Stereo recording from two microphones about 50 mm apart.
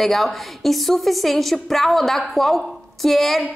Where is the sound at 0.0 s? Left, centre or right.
Centre.